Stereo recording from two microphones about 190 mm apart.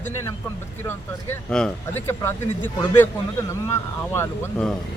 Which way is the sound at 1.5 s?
5° left (ahead or behind).